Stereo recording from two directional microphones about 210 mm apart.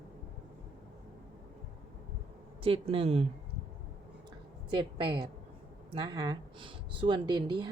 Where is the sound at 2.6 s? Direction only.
25° right (ahead or behind).